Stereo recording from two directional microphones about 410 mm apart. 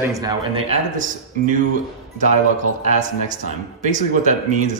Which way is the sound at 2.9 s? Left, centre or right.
Centre.